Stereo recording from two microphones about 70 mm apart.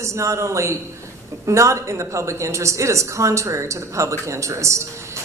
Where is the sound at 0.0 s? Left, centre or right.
Right.